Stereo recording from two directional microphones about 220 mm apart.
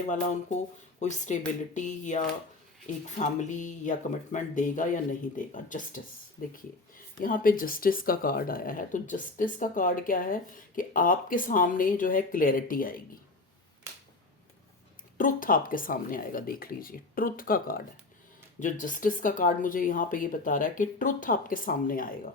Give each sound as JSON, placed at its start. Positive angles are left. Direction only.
{"t": 0.1, "sound": "speech", "side_deg": 35}
{"t": 15.2, "sound": "speech", "side_deg": 40}